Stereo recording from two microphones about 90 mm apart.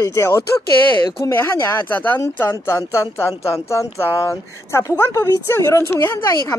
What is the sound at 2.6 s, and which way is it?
Speech, 35° left (ahead or behind).